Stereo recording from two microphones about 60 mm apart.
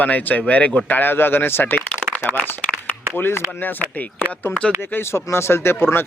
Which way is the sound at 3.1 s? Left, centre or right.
Left.